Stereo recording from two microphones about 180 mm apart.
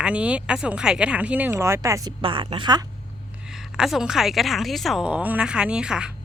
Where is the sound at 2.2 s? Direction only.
30° right (ahead or behind).